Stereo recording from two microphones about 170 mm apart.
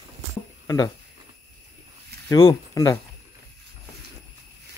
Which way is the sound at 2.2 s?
15° left (ahead or behind).